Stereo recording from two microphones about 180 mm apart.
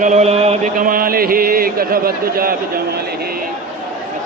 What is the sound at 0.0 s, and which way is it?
Chant, 40° right (ahead or behind).